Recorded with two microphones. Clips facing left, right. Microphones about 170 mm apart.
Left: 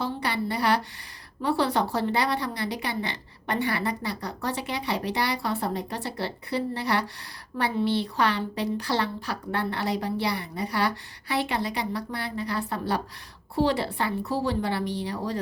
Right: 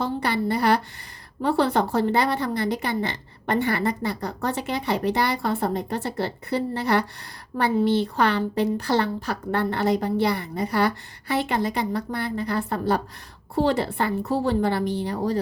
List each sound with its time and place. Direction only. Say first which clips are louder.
0.0 s a woman's voice: right 4 dB; 50° right (ahead or behind)